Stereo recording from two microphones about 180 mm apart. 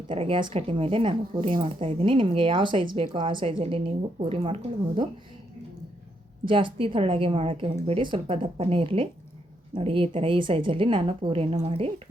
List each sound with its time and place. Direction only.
0.1 s a woman's voice: 30° right (ahead or behind)
6.5 s a woman's voice: 30° right (ahead or behind)